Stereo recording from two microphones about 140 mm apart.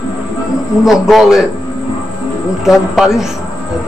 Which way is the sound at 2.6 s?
5° right (ahead or behind).